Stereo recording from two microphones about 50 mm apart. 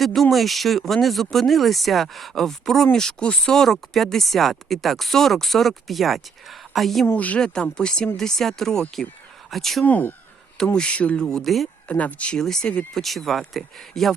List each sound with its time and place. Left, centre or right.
0.0 s speech: centre
7.1 s speech: left
7.3 s speech: centre
9.8 s speech: left
10.8 s speech: left
11.3 s speech: centre
11.9 s speech: left
12.4 s speech: centre